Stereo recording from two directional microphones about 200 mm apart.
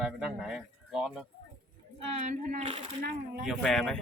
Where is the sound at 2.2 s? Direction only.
35° right (ahead or behind).